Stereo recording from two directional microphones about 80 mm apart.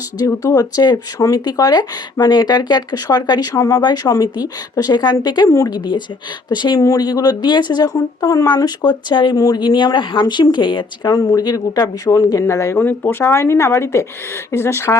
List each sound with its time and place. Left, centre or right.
0.2 s speech: left
5.5 s speech: left
5.7 s speech: left
7.9 s speech: left
8.4 s speech: left
9.3 s speech: left
9.6 s speech: left
11.1 s speech: left
12.8 s speech: left